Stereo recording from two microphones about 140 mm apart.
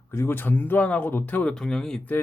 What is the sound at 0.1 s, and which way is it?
Speech, 15° left (ahead or behind).